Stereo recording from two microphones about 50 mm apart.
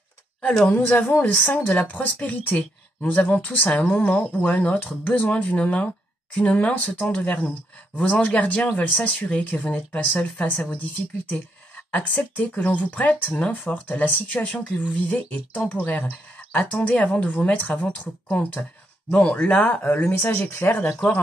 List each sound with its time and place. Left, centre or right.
0.7 s speech: left
19.9 s speech: left